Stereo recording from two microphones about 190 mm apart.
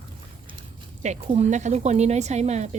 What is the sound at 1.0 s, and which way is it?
Speech, 35° right (ahead or behind).